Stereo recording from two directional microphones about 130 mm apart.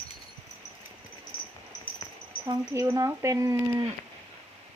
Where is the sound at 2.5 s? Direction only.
25° right (ahead or behind).